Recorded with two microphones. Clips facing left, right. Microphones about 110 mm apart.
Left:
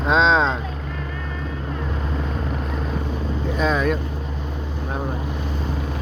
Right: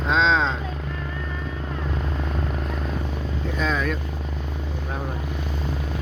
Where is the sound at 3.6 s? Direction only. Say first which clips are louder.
Left 5 dB; 15° left (ahead or behind).